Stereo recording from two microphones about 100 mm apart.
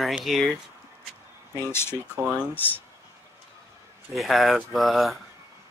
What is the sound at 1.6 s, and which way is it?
Speech, 25° left (ahead or behind).